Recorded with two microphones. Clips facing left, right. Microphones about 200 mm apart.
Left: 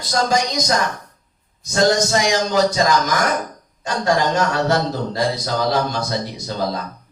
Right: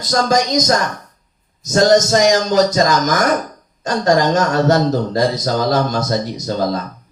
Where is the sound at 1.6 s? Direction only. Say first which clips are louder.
Right 5 dB; 45° right (ahead or behind).